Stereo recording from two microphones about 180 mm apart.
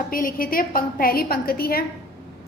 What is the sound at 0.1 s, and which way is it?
A woman's voice, 50° left (ahead or behind).